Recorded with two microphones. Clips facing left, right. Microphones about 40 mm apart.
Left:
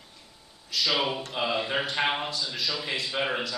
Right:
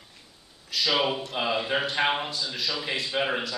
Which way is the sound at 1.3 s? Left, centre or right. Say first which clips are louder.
Left 1 dB; centre.